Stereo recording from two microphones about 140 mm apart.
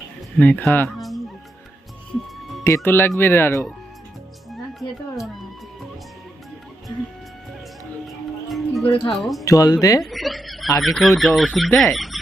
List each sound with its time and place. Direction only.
0.3 s speech: 10° left (ahead or behind)
0.9 s fowl: centre (ahead or behind)
2.6 s speech: 15° left (ahead or behind)
8.0 s music: centre (ahead or behind)
8.8 s speech: 40° left (ahead or behind)
9.1 s speech: centre (ahead or behind)
9.4 s speech: 25° left (ahead or behind)
10.0 s snicker: centre (ahead or behind)
10.8 s speech: centre (ahead or behind)